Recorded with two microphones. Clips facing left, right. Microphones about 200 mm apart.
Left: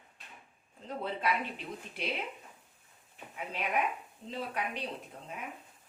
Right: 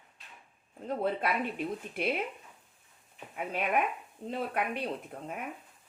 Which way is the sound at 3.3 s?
50° right (ahead or behind).